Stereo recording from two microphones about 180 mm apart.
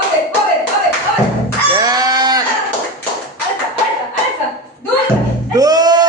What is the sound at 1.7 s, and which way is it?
Goat, 20° right (ahead or behind).